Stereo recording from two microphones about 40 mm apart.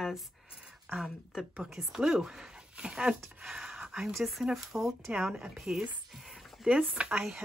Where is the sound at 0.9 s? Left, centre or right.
Right.